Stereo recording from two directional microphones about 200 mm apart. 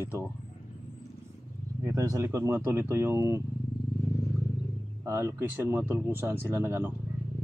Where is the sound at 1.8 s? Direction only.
15° right (ahead or behind).